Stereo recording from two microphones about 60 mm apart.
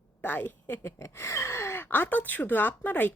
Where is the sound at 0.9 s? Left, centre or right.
Left.